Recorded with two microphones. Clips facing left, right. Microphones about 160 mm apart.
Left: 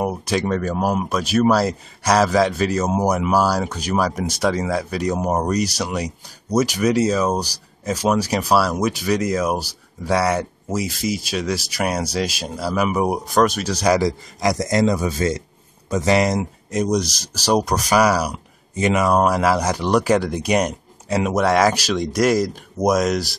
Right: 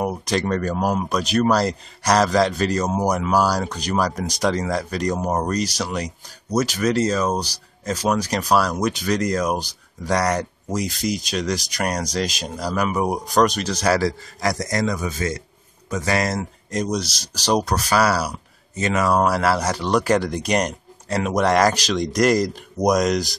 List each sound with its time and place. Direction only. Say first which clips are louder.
0.0 s speech: left 1 dB; 5° left (ahead or behind)